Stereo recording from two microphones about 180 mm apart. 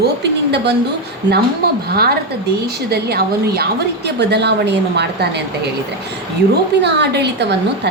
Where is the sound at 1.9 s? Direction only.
60° right (ahead or behind).